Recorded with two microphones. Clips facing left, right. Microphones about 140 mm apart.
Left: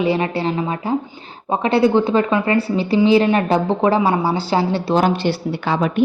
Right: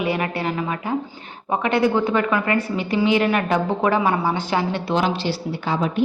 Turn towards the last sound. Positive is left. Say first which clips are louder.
# left 3 dB
turn(degrees=70)  # may be behind; listen again after turning